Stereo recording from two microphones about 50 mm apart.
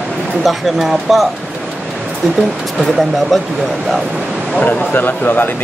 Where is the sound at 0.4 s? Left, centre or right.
Centre.